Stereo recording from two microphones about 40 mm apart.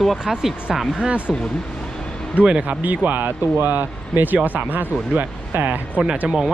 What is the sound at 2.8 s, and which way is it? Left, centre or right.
Speech, right.